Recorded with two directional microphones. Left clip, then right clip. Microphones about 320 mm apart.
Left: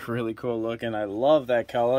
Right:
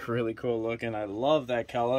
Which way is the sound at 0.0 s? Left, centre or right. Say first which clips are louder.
Left 1 dB; left.